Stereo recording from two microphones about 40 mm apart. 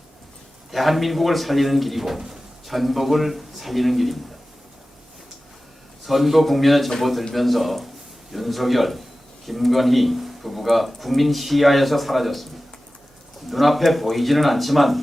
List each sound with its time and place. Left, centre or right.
0.7 s speech: centre
6.1 s speech: centre
13.5 s speech: centre